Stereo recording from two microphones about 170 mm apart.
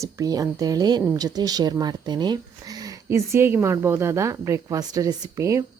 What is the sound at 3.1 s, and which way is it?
A woman's voice, 15° right (ahead or behind).